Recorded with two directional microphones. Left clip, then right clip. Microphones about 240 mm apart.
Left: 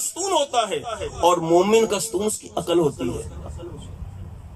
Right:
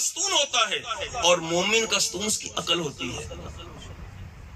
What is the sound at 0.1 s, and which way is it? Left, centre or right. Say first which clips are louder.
A man's voice: left 5 dB; left.